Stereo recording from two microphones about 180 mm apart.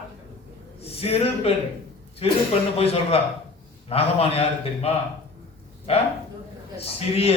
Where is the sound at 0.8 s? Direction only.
35° left (ahead or behind).